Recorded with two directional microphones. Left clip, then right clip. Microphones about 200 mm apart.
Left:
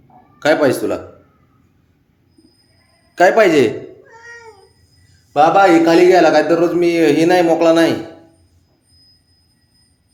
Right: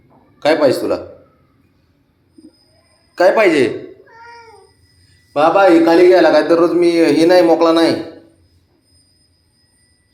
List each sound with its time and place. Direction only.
0.3 s a man's voice: 25° left (ahead or behind)
3.2 s a man's voice: 25° left (ahead or behind)
5.3 s a man's voice: 25° left (ahead or behind)